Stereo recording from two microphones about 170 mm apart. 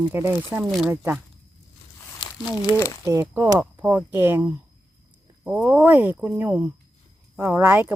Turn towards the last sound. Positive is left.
turn(degrees=-15)  # may be behind; listen again after turning